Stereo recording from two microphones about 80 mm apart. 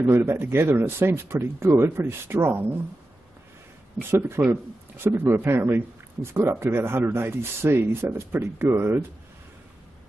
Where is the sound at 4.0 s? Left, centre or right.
Right.